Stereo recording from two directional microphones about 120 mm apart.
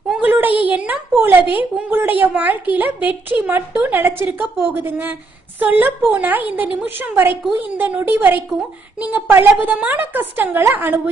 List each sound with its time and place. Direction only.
0.2 s a woman's voice: 15° right (ahead or behind)